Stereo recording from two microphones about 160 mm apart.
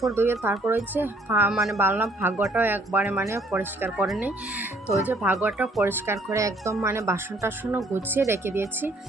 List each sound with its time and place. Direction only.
0.1 s speech: 15° right (ahead or behind)
0.5 s speech: 5° right (ahead or behind)
1.5 s a woman's voice: centre (ahead or behind)
1.8 s speech: 15° right (ahead or behind)